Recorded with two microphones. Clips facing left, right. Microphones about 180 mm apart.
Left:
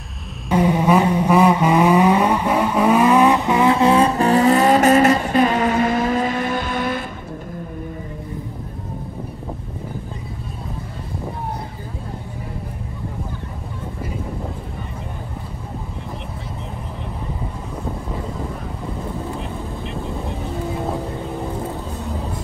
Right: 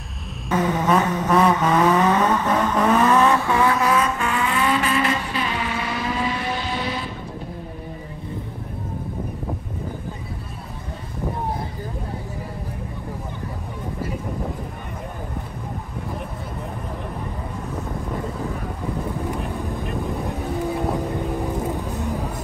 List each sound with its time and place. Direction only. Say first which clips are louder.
0.5 s vehicle: left 4 dB; 15° left (ahead or behind); by 7.1 s 50° left (ahead or behind)
20.0 s vehicle: even; 15° right (ahead or behind)